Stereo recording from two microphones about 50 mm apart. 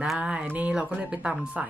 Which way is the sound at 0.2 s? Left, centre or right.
Right.